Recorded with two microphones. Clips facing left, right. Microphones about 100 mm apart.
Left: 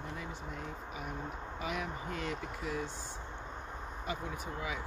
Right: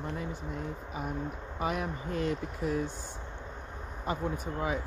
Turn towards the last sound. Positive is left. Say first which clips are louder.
# right 7 dB
turn(degrees=-40)  # may be behind; listen again after turning